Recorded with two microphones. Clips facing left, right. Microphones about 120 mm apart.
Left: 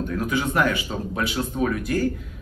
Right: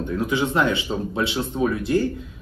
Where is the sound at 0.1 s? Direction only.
25° right (ahead or behind).